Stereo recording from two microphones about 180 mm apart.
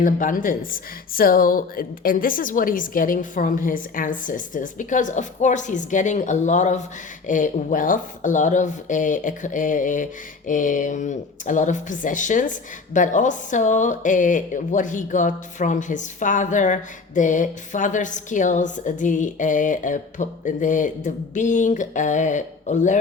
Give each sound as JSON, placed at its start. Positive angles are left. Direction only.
{"t": 0.0, "sound": "speech", "side_deg": 50}